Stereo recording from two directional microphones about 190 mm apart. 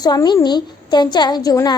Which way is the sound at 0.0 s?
20° left (ahead or behind).